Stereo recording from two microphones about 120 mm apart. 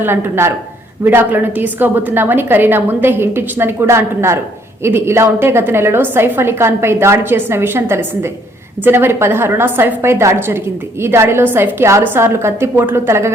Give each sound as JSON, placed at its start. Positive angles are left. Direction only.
{"t": 0.0, "sound": "a woman's voice", "side_deg": -20}